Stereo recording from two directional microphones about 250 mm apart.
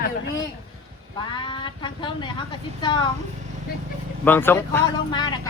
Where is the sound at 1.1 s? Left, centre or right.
Centre.